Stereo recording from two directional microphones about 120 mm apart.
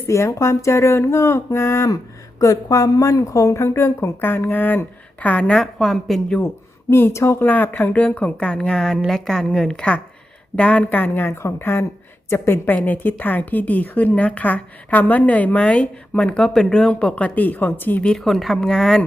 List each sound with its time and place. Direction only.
0.1 s speech: 25° left (ahead or behind); by 6.4 s 5° left (ahead or behind)
6.9 s a woman's voice: 20° left (ahead or behind); by 19.0 s 5° left (ahead or behind)